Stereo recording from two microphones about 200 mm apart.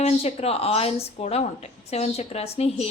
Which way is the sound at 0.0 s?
30° left (ahead or behind).